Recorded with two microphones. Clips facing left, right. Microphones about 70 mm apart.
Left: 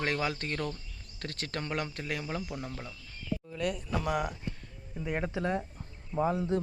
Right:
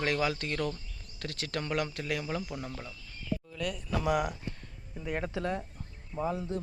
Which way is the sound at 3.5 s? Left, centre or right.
Left.